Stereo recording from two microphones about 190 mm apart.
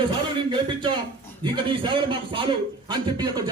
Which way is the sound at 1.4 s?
25° right (ahead or behind).